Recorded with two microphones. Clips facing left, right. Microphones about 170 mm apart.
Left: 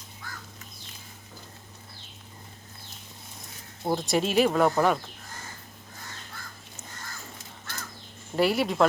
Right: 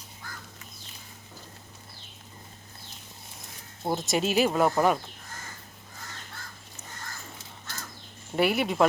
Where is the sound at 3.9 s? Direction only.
Centre (ahead or behind).